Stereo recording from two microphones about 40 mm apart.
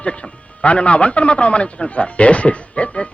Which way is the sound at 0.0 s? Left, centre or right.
Left.